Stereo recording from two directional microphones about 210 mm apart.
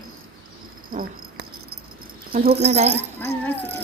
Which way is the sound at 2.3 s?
45° right (ahead or behind).